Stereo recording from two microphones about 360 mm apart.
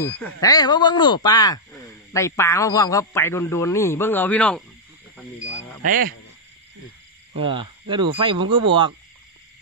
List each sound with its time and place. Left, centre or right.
0.0 s a man's voice: centre
5.1 s wild animals: centre
5.9 s speech: right
7.3 s speech: centre